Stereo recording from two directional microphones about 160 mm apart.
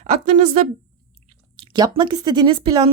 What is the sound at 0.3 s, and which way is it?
Speech, 50° right (ahead or behind).